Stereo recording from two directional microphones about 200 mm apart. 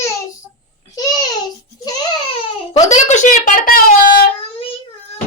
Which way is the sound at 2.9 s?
35° left (ahead or behind).